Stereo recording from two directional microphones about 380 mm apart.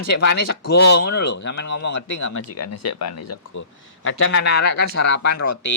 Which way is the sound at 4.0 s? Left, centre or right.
Left.